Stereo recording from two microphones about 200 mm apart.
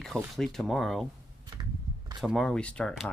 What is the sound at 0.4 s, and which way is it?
Speech, centre (ahead or behind).